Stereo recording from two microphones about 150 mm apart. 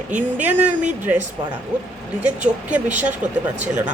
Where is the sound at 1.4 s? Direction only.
30° right (ahead or behind).